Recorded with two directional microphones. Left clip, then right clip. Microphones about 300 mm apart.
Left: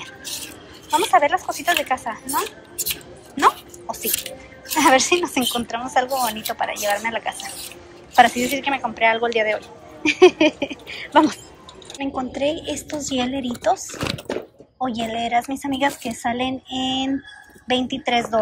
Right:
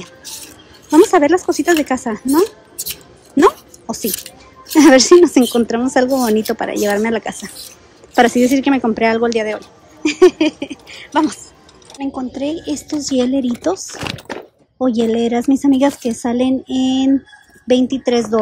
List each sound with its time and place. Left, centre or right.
0.8 s a woman's voice: right
3.9 s a woman's voice: right
14.0 s speech: centre
14.9 s a woman's voice: right